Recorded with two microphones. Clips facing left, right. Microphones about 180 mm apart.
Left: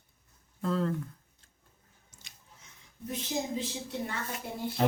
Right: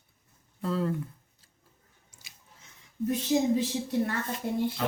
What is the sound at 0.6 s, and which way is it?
Speech, 5° right (ahead or behind).